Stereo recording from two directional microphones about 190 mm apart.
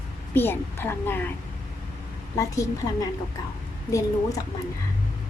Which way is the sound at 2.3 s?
15° left (ahead or behind).